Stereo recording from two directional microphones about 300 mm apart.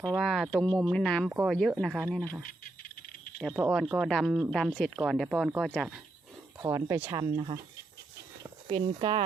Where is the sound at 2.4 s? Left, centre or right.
Left.